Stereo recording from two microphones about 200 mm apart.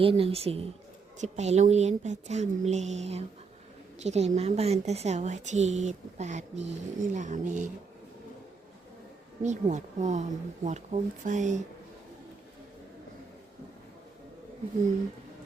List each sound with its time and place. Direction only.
0.0 s a woman's voice: 30° right (ahead or behind)
9.4 s a woman's voice: 35° right (ahead or behind)